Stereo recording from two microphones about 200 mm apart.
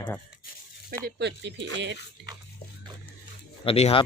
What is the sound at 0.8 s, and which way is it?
Speech, 55° right (ahead or behind).